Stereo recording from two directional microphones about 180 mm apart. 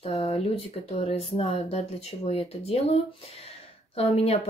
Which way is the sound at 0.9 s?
35° left (ahead or behind).